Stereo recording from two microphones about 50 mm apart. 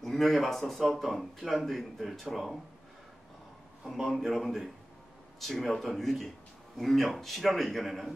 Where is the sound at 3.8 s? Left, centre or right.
Centre.